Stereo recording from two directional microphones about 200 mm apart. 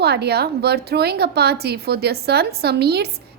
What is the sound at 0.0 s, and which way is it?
A woman's voice, 55° right (ahead or behind).